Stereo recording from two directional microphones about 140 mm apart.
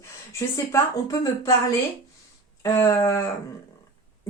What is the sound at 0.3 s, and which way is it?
Speech, 25° left (ahead or behind).